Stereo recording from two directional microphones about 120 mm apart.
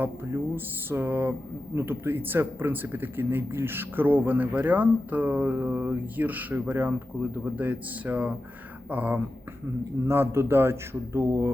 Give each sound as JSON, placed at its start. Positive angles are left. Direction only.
{"t": 0.5, "sound": "speech", "side_deg": -20}